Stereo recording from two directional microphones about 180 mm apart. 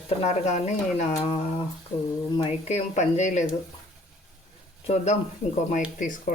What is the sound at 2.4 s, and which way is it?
Speech, 35° left (ahead or behind).